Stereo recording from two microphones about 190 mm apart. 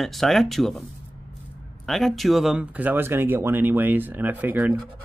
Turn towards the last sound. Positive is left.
turn(degrees=-10)  # may be behind; listen again after turning